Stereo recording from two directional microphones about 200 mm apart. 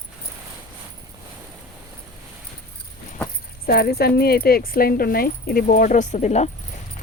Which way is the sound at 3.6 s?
50° left (ahead or behind).